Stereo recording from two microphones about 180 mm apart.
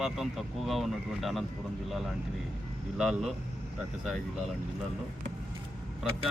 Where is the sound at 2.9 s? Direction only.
5° right (ahead or behind).